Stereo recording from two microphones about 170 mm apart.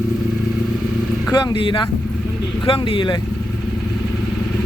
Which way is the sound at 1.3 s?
20° left (ahead or behind).